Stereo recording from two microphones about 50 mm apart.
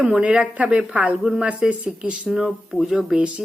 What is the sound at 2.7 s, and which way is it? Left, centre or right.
Speech, centre.